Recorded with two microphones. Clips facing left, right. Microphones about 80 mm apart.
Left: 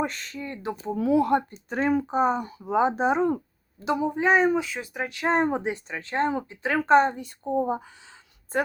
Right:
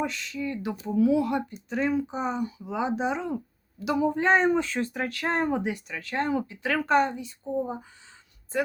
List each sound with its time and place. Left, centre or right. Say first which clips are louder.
0.0 s speech: even; left
3.8 s speech: even; centre
7.2 s speech: left 4 dB; left